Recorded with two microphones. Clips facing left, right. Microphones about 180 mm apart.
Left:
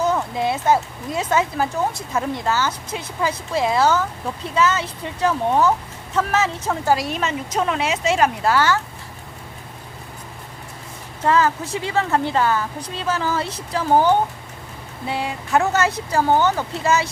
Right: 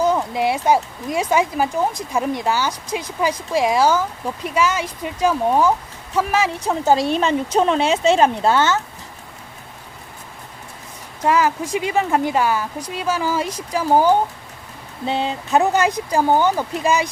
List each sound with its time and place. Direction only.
0.0 s a woman's voice: 10° right (ahead or behind)
11.2 s a woman's voice: 10° right (ahead or behind)
15.0 s a woman's voice: 25° right (ahead or behind)